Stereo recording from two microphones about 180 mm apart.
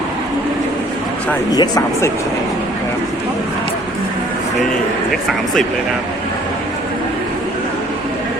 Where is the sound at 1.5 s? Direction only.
20° left (ahead or behind).